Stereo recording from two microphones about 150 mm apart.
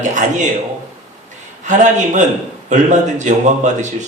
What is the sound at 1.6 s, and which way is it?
A man's voice, 55° right (ahead or behind).